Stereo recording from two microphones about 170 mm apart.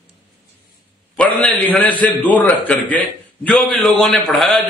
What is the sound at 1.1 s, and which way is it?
A man's voice, 10° left (ahead or behind).